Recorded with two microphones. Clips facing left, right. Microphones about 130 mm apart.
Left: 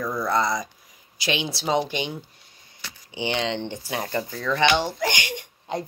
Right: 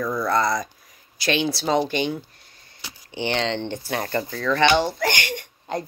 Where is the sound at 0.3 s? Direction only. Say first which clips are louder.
Right 1 dB; 20° left (ahead or behind).